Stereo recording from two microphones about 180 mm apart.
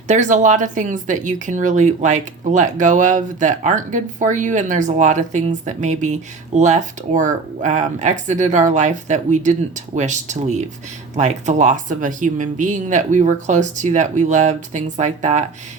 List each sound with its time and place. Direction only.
0.1 s speech: 40° right (ahead or behind)